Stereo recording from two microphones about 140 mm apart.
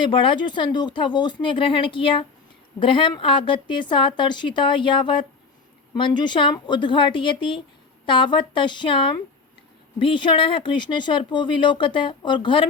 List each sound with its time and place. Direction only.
0.0 s speech: 35° left (ahead or behind)